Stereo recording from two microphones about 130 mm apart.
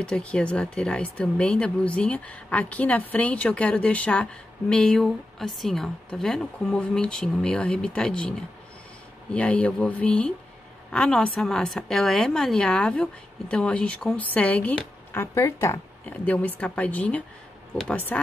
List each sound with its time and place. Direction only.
0.0 s speech: 10° left (ahead or behind)
9.3 s speech: 10° left (ahead or behind)
15.3 s speech: 20° left (ahead or behind)